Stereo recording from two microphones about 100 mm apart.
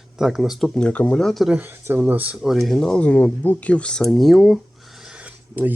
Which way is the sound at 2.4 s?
Centre (ahead or behind).